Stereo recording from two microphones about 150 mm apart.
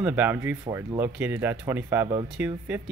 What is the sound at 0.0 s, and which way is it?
Speech, 10° right (ahead or behind).